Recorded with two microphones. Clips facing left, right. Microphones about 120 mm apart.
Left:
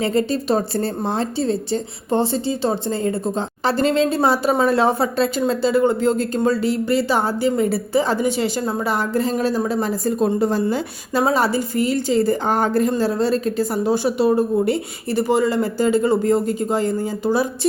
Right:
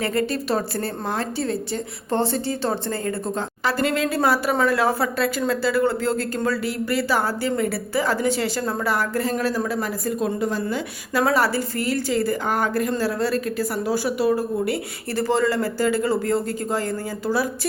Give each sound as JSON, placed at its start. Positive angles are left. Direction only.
{"t": 0.0, "sound": "a woman's voice", "side_deg": 20}
{"t": 11.2, "sound": "a woman's voice", "side_deg": 20}